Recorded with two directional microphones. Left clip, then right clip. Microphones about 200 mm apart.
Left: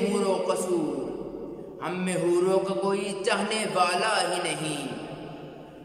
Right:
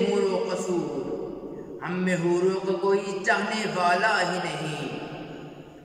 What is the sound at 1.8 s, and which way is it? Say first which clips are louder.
A man's voice: right 1 dB; 10° left (ahead or behind).